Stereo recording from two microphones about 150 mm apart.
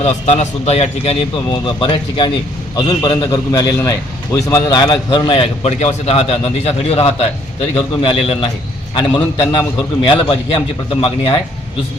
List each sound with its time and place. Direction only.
0.0 s a man's voice: 50° left (ahead or behind)
1.5 s a man's voice: 30° left (ahead or behind)